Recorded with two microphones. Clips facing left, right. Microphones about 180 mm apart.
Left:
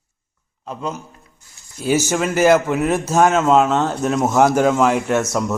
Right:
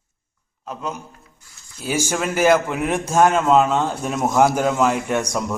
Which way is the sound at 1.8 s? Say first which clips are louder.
Left 5 dB; 10° right (ahead or behind).